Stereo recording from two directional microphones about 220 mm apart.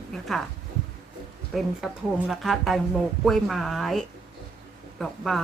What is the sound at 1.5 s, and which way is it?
A woman's voice, centre (ahead or behind).